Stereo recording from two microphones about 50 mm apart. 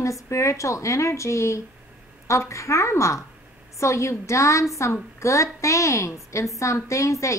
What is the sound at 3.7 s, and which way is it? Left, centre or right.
Speech, left.